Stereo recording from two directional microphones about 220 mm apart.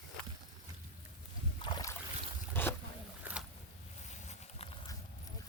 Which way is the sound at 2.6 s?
10° left (ahead or behind).